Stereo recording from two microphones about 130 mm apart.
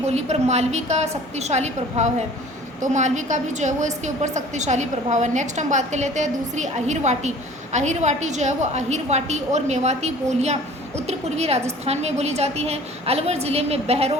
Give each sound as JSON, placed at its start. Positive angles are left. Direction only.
{"t": 0.1, "sound": "a woman's voice", "side_deg": -55}